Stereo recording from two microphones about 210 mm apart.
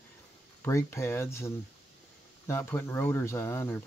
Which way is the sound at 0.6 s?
10° left (ahead or behind).